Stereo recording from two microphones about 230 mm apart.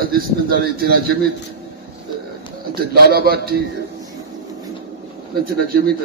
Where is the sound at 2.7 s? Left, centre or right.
Right.